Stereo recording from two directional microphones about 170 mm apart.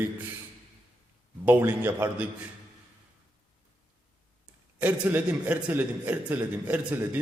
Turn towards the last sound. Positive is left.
turn(degrees=-10)  # may be behind; listen again after turning